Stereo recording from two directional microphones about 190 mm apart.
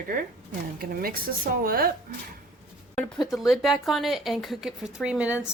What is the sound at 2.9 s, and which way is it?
Speech, centre (ahead or behind).